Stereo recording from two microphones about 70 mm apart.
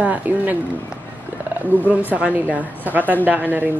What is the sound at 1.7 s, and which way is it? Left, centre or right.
Speech, left.